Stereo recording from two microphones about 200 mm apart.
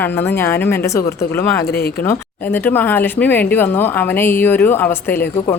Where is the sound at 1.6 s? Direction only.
50° left (ahead or behind).